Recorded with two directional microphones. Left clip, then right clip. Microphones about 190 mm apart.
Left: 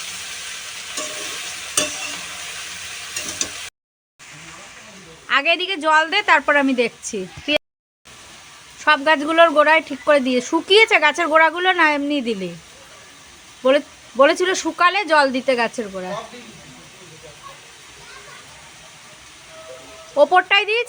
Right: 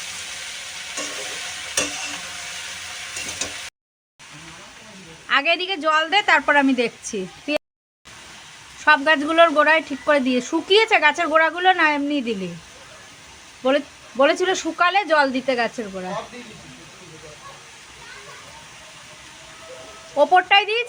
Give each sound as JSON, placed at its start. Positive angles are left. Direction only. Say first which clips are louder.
{"t": 5.3, "sound": "speech", "louder": "left 1 dB", "side_deg": 10}
{"t": 8.8, "sound": "speech", "louder": "even", "side_deg": 10}
{"t": 13.7, "sound": "speech", "louder": "left 4 dB", "side_deg": 15}
{"t": 20.1, "sound": "speech", "louder": "left 1 dB", "side_deg": 15}